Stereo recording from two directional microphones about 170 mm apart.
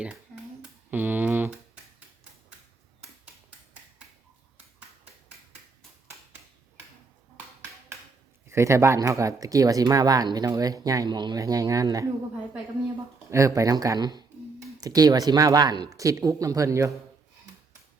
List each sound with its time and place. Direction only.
0.9 s typing: 10° right (ahead or behind)
8.4 s speech: 15° right (ahead or behind)
13.3 s speech: 20° right (ahead or behind)